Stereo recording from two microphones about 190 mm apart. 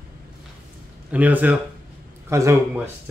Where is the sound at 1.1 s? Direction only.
10° right (ahead or behind).